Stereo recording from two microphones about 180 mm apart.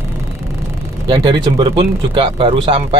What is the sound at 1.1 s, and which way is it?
Speech, 25° right (ahead or behind).